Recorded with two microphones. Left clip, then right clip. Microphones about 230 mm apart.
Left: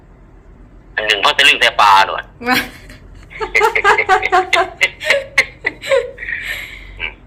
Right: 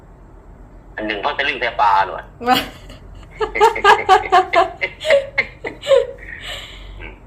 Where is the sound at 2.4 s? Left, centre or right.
Left.